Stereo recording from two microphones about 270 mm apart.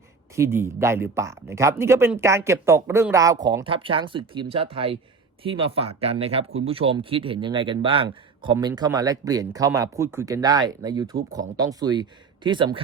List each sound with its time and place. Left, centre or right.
0.3 s a man's voice: centre